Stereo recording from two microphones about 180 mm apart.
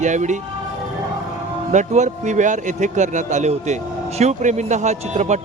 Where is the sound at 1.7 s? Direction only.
40° right (ahead or behind).